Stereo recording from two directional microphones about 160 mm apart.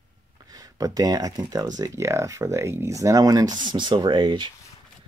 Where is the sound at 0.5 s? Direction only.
20° right (ahead or behind).